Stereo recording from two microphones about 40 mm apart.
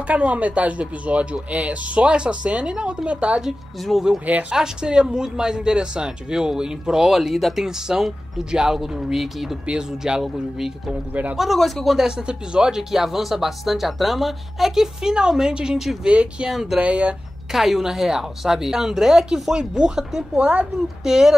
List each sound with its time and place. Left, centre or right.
0.0 s a woman's voice: right; by 7.1 s centre
7.1 s a woman's voice: centre
9.7 s speech: right
11.3 s speech: centre
12.2 s speech: right
12.9 s a woman's voice: centre
16.1 s speech: right
16.4 s a woman's voice: centre
16.8 s speech: right
17.5 s a woman's voice: centre
20.3 s speech: right
21.0 s a woman's voice: centre